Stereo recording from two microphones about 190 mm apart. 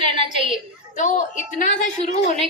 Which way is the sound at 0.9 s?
40° left (ahead or behind).